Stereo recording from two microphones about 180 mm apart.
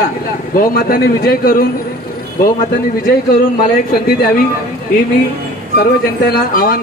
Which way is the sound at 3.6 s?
60° left (ahead or behind).